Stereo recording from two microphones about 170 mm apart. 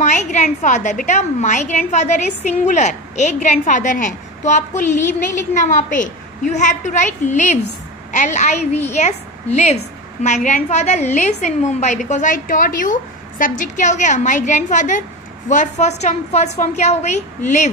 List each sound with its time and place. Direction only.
0.0 s a woman's voice: 45° left (ahead or behind)